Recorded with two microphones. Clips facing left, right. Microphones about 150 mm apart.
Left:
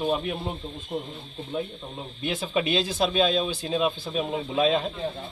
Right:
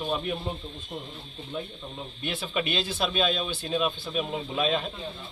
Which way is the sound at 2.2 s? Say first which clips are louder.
Left 4 dB; 20° left (ahead or behind).